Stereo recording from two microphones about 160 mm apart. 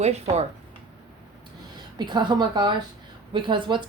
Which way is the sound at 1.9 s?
30° right (ahead or behind).